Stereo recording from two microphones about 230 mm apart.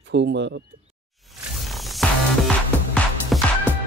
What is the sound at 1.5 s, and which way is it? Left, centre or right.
Music, centre.